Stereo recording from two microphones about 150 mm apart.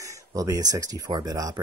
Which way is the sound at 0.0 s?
20° right (ahead or behind).